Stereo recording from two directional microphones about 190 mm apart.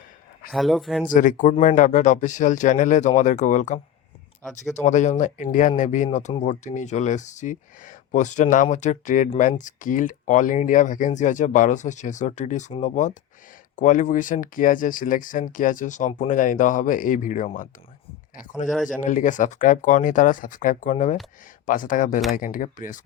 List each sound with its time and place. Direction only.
0.5 s speech: centre (ahead or behind)
1.0 s speech: 45° left (ahead or behind)